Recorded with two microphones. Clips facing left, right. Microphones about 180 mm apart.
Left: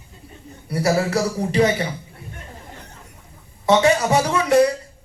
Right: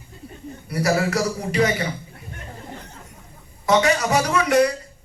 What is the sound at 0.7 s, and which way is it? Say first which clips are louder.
Speech: left 2 dB; 30° left (ahead or behind).